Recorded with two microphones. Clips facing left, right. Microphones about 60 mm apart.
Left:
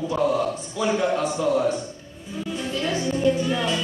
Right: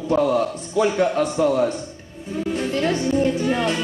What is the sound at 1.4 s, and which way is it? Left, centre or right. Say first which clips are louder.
A man's voice: right 2 dB; right.